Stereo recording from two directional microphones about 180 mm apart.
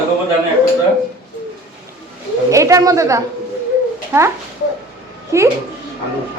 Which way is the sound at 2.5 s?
15° right (ahead or behind).